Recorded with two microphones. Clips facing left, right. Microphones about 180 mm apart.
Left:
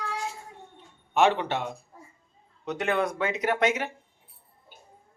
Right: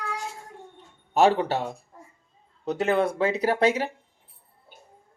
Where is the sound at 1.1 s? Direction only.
35° right (ahead or behind).